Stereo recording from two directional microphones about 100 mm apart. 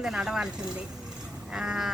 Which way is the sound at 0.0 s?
5° right (ahead or behind).